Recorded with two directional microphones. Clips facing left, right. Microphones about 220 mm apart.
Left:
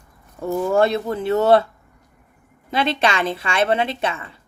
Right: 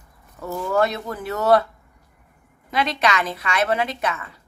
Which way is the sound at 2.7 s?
30° left (ahead or behind).